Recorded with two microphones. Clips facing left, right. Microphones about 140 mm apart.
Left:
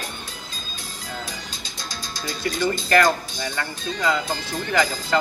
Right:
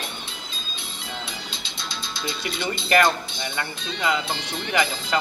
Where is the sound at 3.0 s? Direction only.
25° right (ahead or behind).